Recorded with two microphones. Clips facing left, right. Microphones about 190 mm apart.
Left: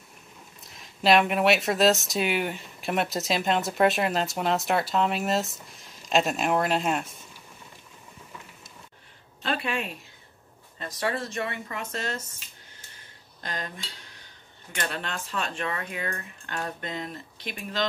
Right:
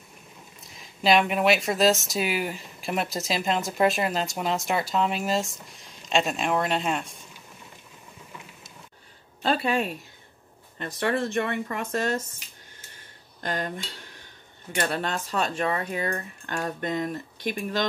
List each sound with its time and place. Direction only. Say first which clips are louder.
0.7 s speech: even; centre (ahead or behind)
9.4 s a sound: right 5 dB; 35° right (ahead or behind)
10.8 s speech: right 4 dB; 55° right (ahead or behind)
13.4 s cutlery: right 6 dB; 50° right (ahead or behind)
14.8 s speech: right 5 dB; 40° right (ahead or behind)